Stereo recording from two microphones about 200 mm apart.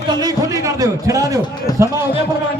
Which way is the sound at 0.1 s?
20° right (ahead or behind).